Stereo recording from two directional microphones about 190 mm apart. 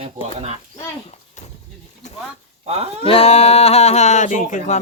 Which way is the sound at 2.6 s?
35° right (ahead or behind).